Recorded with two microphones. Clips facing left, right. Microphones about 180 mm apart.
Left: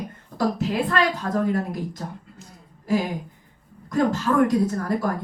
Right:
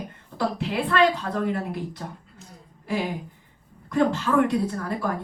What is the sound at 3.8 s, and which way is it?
A woman's voice, 40° left (ahead or behind).